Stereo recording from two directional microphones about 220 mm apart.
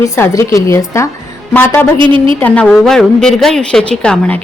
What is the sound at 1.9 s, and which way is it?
Speech, 25° right (ahead or behind).